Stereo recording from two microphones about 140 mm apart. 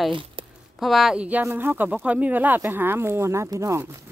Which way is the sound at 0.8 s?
Centre (ahead or behind).